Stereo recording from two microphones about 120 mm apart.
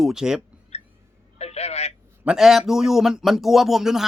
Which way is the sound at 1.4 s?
60° left (ahead or behind).